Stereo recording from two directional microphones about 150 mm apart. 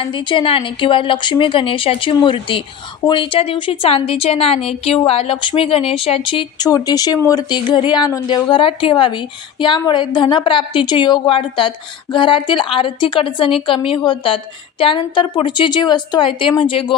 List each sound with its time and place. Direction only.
0.0 s speech: 35° left (ahead or behind)